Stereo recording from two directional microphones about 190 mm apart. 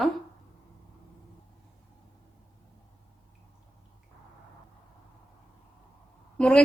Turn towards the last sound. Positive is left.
turn(degrees=5)  # may be behind; listen again after turning